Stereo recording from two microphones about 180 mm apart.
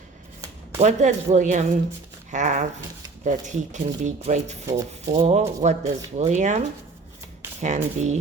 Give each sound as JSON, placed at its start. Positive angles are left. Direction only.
{"t": 0.8, "sound": "speech", "side_deg": -40}
{"t": 7.6, "sound": "speech", "side_deg": -40}